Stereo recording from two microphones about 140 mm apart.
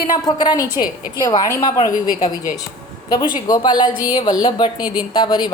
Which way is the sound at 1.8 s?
70° left (ahead or behind).